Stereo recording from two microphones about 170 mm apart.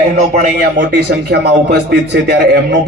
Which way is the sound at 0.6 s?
75° right (ahead or behind).